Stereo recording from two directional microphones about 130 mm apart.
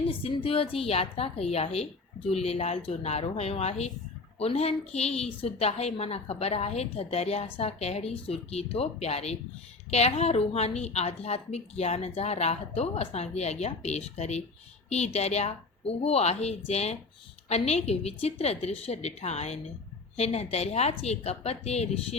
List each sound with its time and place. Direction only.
0.1 s a woman's voice: 45° left (ahead or behind)